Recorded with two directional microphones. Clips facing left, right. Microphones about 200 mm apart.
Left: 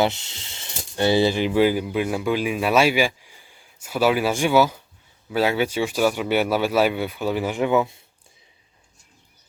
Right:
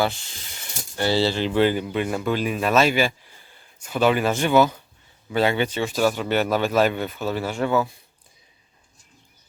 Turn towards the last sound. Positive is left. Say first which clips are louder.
# left 2 dB
turn(degrees=20)  # may be behind; listen again after turning